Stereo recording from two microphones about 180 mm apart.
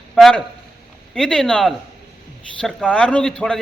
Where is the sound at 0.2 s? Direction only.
Centre (ahead or behind).